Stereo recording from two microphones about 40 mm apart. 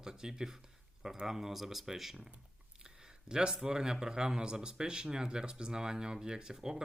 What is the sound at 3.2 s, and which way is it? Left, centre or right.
Speech, centre.